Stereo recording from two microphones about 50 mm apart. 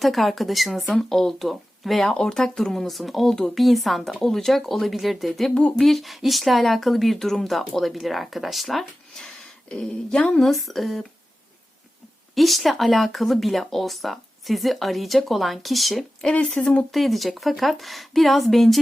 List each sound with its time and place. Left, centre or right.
0.0 s speech: centre
9.6 s speech: centre
10.4 s speech: centre
12.3 s speech: centre
16.3 s speech: left
16.9 s speech: centre